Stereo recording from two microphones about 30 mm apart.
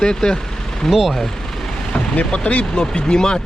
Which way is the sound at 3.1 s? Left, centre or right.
Left.